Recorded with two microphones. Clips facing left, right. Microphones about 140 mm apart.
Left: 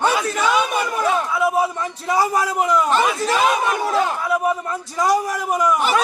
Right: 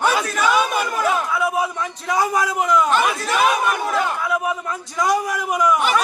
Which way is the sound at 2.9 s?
20° left (ahead or behind).